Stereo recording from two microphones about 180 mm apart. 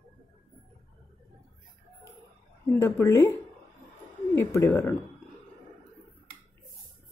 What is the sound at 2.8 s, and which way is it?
Speech, 15° left (ahead or behind).